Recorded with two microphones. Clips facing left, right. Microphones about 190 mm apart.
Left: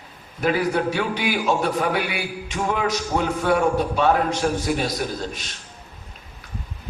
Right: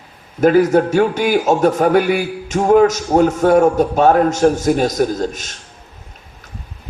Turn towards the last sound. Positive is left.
turn(degrees=-45)  # may be behind; listen again after turning